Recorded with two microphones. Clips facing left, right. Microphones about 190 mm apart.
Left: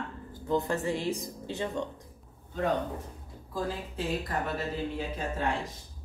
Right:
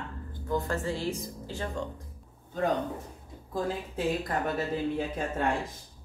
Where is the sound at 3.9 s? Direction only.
50° right (ahead or behind).